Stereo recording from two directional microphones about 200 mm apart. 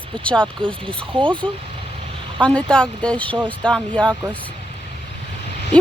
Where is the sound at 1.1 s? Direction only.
25° right (ahead or behind).